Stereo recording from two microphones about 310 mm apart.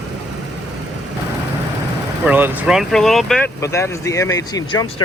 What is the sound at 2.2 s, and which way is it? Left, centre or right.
Speech, centre.